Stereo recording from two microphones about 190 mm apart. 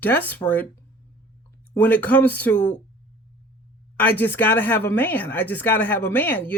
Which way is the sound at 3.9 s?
10° left (ahead or behind).